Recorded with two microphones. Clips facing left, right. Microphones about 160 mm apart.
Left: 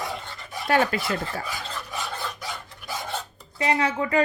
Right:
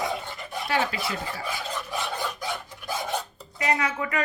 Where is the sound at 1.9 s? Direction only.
Centre (ahead or behind).